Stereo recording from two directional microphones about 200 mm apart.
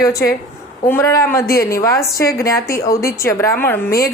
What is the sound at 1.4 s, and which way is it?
Speech, 50° left (ahead or behind).